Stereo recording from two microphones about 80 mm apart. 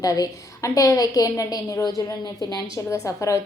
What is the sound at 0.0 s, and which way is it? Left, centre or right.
A woman's voice, left.